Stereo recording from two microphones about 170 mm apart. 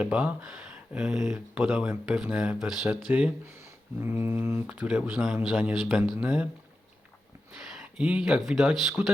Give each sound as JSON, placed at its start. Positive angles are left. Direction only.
{"t": 0.0, "sound": "speech", "side_deg": -5}
{"t": 1.2, "sound": "speech", "side_deg": -15}
{"t": 1.6, "sound": "speech", "side_deg": -5}
{"t": 7.8, "sound": "speech", "side_deg": -5}